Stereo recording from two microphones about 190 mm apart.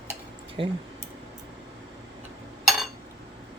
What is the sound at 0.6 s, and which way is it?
Speech, 30° right (ahead or behind).